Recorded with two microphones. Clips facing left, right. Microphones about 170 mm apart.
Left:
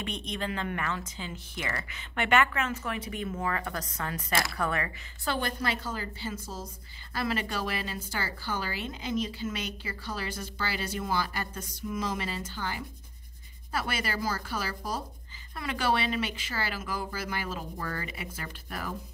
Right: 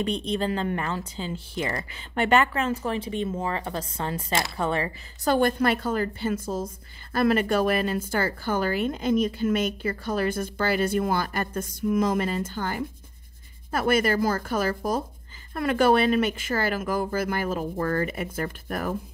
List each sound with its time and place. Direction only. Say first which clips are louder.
0.0 s speech: right 9 dB; 30° right (ahead or behind)
5.2 s a woman's voice: right 10 dB; 45° right (ahead or behind)